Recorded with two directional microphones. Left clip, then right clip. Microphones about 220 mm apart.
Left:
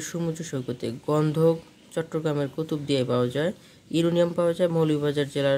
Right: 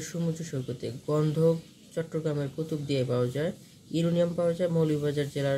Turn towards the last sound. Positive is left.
turn(degrees=40)  # may be behind; listen again after turning